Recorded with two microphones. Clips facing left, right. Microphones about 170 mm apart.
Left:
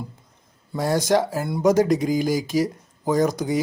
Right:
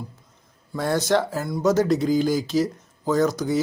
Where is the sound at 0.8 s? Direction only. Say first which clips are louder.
Left 1 dB; 10° left (ahead or behind).